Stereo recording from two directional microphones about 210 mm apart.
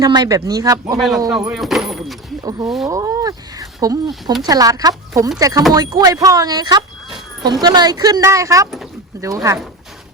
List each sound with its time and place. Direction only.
0.0 s speech: 15° right (ahead or behind)
0.9 s speech: centre (ahead or behind)
2.4 s speech: 20° right (ahead or behind)
4.1 s speech: centre (ahead or behind)
4.4 s speech: 15° right (ahead or behind)